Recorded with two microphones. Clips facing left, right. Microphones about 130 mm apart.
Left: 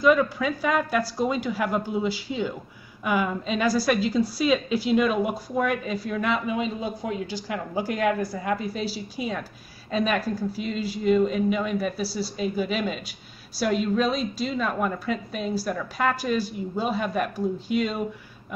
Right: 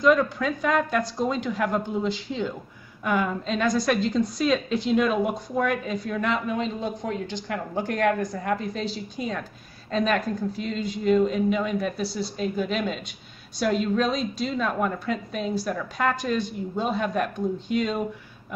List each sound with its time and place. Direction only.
0.0 s a woman's voice: 5° left (ahead or behind)